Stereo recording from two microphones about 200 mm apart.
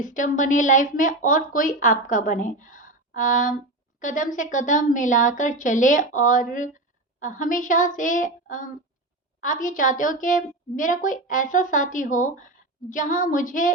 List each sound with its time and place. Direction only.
0.0 s a woman's voice: 40° left (ahead or behind)